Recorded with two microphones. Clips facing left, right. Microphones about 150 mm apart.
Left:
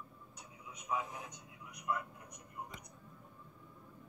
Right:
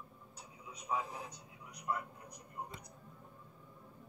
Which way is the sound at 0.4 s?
30° right (ahead or behind).